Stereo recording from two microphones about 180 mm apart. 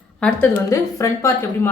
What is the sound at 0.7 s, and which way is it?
A woman's voice, 15° left (ahead or behind).